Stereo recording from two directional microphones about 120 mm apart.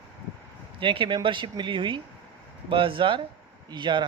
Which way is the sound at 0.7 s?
45° right (ahead or behind).